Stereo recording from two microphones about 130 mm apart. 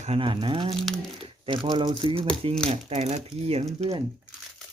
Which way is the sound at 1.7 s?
35° right (ahead or behind).